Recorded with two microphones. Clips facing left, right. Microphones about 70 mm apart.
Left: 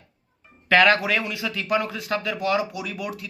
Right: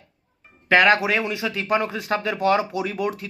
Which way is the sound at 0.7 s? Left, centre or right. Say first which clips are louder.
Right 1 dB; centre.